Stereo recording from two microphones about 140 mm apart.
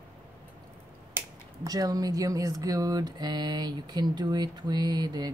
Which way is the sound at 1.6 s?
25° right (ahead or behind).